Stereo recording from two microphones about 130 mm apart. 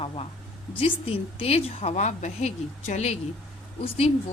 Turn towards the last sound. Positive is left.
turn(degrees=50)  # may be behind; listen again after turning